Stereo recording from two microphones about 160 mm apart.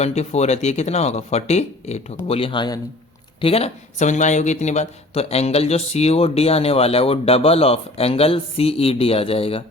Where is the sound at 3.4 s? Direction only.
40° left (ahead or behind).